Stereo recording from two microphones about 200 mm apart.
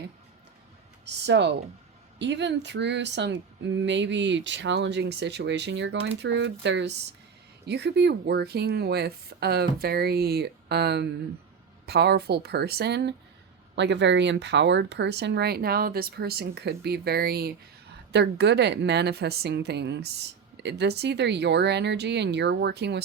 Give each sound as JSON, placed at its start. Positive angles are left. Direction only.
{"t": 1.0, "sound": "a woman's voice", "side_deg": -60}